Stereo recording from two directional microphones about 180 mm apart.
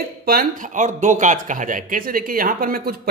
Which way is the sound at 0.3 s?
50° right (ahead or behind).